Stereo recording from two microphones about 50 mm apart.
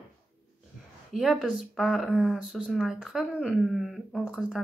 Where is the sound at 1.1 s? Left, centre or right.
Centre.